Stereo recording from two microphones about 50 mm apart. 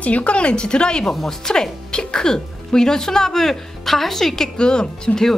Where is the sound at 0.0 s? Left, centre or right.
Left.